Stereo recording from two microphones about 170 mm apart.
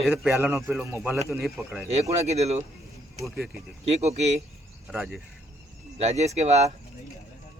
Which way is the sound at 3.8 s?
40° right (ahead or behind).